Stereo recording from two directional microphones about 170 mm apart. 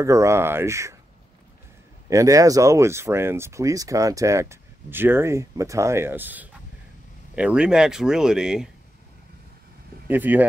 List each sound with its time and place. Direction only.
0.0 s speech: 15° right (ahead or behind)
2.0 s speech: 20° right (ahead or behind); by 8.6 s 5° right (ahead or behind)
10.0 s speech: 10° right (ahead or behind)